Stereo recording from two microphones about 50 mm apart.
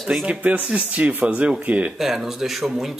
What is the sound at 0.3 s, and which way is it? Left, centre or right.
Speech, right.